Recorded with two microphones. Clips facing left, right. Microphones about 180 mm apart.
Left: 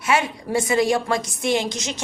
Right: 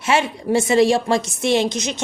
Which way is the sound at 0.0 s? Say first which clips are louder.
Right 2 dB; 25° right (ahead or behind).